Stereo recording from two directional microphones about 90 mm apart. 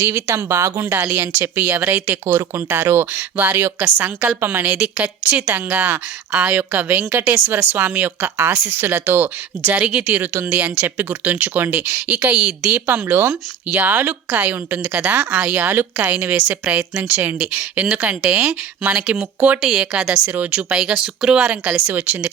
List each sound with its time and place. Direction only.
0.0 s a woman's voice: 25° right (ahead or behind)
4.6 s a woman's voice: 15° right (ahead or behind)
12.8 s a woman's voice: 25° right (ahead or behind)